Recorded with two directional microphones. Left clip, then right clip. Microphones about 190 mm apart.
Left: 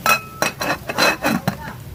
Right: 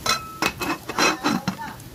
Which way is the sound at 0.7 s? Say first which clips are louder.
Left 4 dB; 30° left (ahead or behind).